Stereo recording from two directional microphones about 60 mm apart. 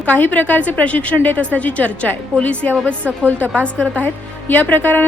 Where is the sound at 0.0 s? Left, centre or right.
Left.